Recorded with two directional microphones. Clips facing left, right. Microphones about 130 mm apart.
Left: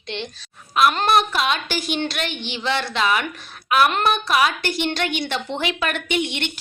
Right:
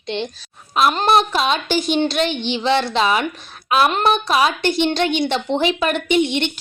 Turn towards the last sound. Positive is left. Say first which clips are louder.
# right 7 dB
turn(degrees=-20)  # may be behind; listen again after turning